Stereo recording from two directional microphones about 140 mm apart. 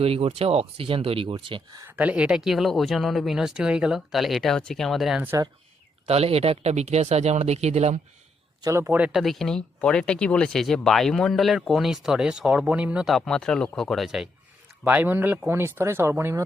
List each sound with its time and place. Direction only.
0.0 s speech: 45° right (ahead or behind)
1.9 s speech: 10° right (ahead or behind)
5.2 s speech: 20° right (ahead or behind)
6.1 s speech: 45° right (ahead or behind)
8.6 s speech: 20° right (ahead or behind)
9.2 s speech: centre (ahead or behind); by 16.4 s 15° right (ahead or behind)